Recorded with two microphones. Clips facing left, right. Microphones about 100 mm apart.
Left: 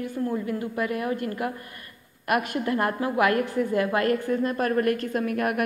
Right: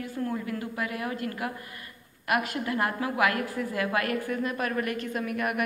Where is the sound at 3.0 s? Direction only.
30° left (ahead or behind).